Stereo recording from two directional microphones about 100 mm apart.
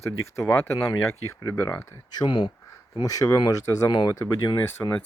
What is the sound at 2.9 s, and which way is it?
Speech, 40° left (ahead or behind).